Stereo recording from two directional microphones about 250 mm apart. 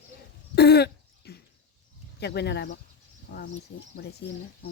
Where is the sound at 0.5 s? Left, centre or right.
Left.